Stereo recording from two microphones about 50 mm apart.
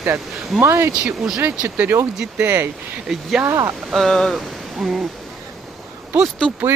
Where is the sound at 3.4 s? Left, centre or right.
Right.